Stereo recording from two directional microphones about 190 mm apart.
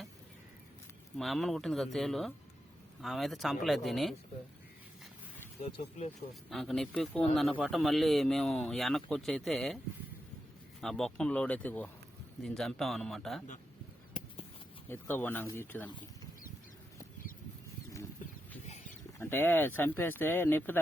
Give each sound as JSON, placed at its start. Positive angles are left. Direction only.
{"t": 1.2, "sound": "speech", "side_deg": 0}
{"t": 5.6, "sound": "speech", "side_deg": 30}
{"t": 6.5, "sound": "speech", "side_deg": 0}
{"t": 10.8, "sound": "speech", "side_deg": 0}
{"t": 14.8, "sound": "speech", "side_deg": 10}
{"t": 15.9, "sound": "a sound", "side_deg": 25}
{"t": 19.2, "sound": "speech", "side_deg": 10}